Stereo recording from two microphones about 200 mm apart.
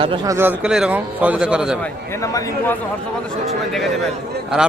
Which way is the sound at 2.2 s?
15° left (ahead or behind).